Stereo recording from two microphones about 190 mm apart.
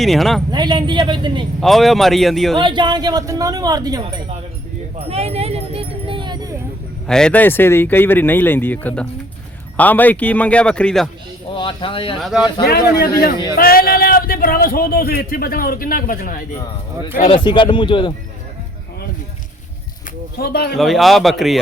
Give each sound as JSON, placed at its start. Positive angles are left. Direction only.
{"t": 0.0, "sound": "speech", "side_deg": 0}
{"t": 0.5, "sound": "speech", "side_deg": -25}
{"t": 1.6, "sound": "speech", "side_deg": 0}
{"t": 2.6, "sound": "speech", "side_deg": -25}
{"t": 4.9, "sound": "a sound", "side_deg": -30}
{"t": 7.1, "sound": "speech", "side_deg": 5}
{"t": 11.5, "sound": "speech", "side_deg": 25}
{"t": 12.2, "sound": "speech", "side_deg": -5}
{"t": 12.6, "sound": "speech", "side_deg": 50}
{"t": 17.2, "sound": "speech", "side_deg": 25}
{"t": 20.4, "sound": "speech", "side_deg": 55}
{"t": 20.7, "sound": "speech", "side_deg": 0}